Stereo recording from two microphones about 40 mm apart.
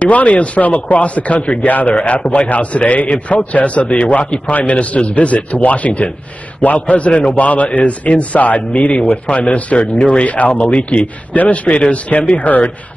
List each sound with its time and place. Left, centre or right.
0.0 s a man's voice: left
2.0 s a man's voice: left
3.1 s a man's voice: left
12.4 s a man's voice: left